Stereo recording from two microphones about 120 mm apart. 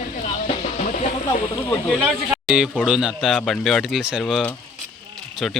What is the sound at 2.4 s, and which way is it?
A man's voice, 5° right (ahead or behind).